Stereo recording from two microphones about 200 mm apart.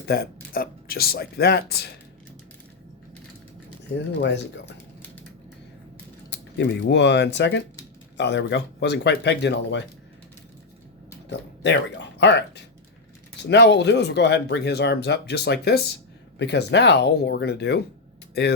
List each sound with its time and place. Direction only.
0.0 s speech: 50° left (ahead or behind)
3.9 s speech: 60° left (ahead or behind)
6.6 s speech: 60° left (ahead or behind)
11.3 s speech: 60° left (ahead or behind)